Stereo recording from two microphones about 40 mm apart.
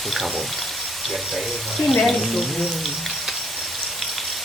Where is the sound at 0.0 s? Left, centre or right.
Centre.